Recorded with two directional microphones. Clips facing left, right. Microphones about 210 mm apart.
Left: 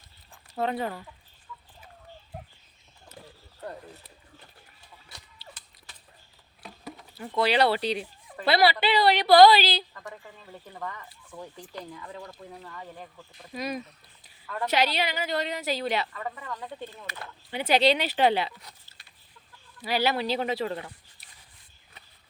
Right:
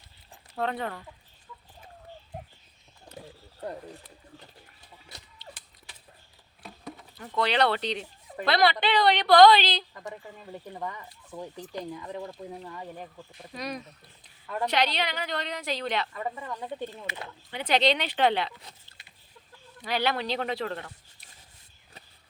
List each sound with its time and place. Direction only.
0.5 s a woman's voice: 5° left (ahead or behind)
6.6 s insect: centre (ahead or behind)
7.3 s a woman's voice: 10° left (ahead or behind)
9.9 s speech: 20° right (ahead or behind)
13.5 s a woman's voice: 5° left (ahead or behind)
14.4 s a woman's voice: 15° right (ahead or behind)
14.7 s a woman's voice: 5° left (ahead or behind)
16.1 s speech: 25° right (ahead or behind)
17.5 s a woman's voice: 10° left (ahead or behind)
19.8 s a woman's voice: 5° left (ahead or behind)